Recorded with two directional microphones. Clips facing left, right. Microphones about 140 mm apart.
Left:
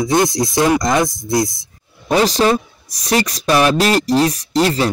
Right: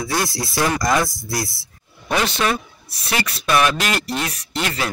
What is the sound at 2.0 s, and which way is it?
Speech, 35° left (ahead or behind).